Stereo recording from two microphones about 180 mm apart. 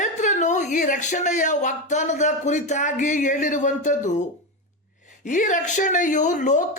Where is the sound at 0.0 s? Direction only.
45° left (ahead or behind).